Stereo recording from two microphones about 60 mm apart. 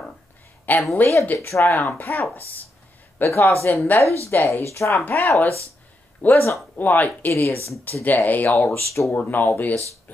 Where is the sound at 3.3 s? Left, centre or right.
Left.